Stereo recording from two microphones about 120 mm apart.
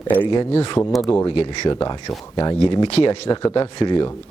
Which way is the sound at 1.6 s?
40° left (ahead or behind).